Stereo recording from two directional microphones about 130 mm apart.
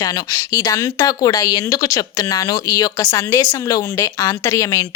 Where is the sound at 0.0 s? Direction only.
25° left (ahead or behind).